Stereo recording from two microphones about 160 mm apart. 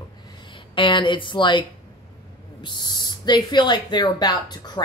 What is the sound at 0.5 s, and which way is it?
Speech, 30° left (ahead or behind).